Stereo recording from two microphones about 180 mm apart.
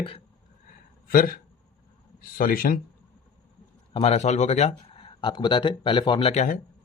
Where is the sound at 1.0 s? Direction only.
55° left (ahead or behind).